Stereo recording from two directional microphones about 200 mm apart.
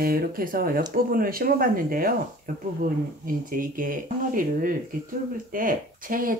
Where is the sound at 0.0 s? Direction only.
50° right (ahead or behind).